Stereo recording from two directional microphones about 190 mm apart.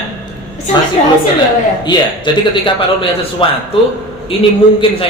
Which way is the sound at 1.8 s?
25° left (ahead or behind).